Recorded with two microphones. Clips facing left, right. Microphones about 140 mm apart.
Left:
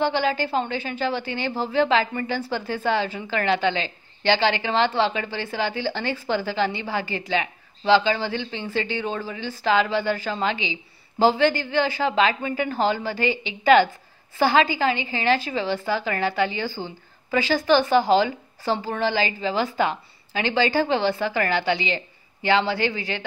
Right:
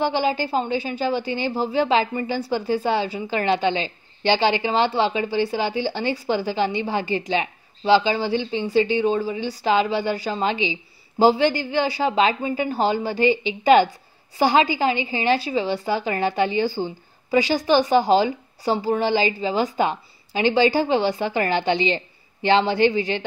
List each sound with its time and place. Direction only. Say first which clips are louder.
0.0 s a woman's voice: right 1 dB; 15° right (ahead or behind)